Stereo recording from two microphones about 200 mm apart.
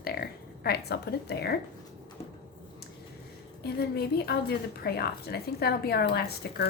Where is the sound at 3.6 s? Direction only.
50° left (ahead or behind).